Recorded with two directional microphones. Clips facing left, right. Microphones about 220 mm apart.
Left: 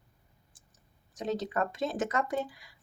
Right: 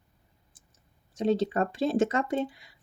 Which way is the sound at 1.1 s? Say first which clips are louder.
Right 6 dB; 30° right (ahead or behind).